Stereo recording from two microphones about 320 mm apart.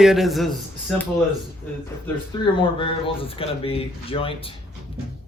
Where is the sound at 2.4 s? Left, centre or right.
Centre.